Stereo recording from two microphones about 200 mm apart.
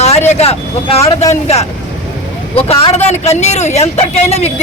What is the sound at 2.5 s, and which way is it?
Speech, 30° left (ahead or behind).